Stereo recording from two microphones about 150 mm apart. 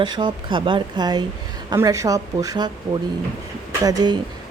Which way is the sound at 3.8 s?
25° right (ahead or behind).